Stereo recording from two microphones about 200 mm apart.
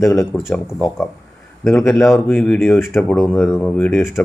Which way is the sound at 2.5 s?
10° left (ahead or behind).